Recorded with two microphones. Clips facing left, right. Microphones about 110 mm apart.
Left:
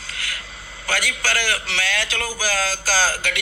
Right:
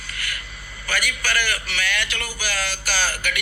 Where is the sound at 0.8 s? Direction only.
90° left.